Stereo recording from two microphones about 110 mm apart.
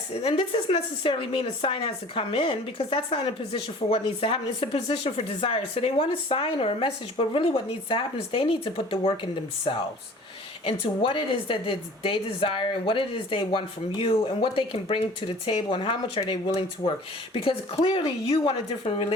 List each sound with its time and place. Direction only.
0.1 s a woman's voice: 65° left (ahead or behind)